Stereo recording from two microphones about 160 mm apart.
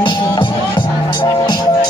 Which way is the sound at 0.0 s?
30° left (ahead or behind).